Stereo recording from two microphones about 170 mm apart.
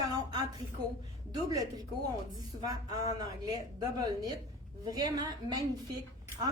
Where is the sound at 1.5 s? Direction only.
20° right (ahead or behind).